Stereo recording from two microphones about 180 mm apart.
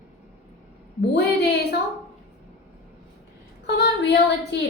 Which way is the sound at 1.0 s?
65° left (ahead or behind).